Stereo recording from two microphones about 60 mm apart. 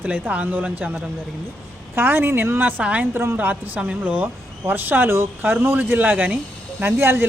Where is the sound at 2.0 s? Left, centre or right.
Right.